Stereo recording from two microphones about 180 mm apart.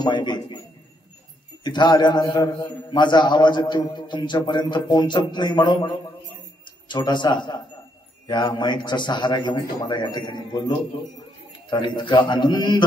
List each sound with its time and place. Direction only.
0.0 s a man's voice: 25° left (ahead or behind)
1.6 s a man's voice: 25° left (ahead or behind)
6.9 s a man's voice: 25° left (ahead or behind)